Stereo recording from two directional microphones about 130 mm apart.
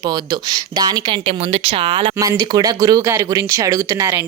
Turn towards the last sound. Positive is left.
turn(degrees=-20)  # may be behind; listen again after turning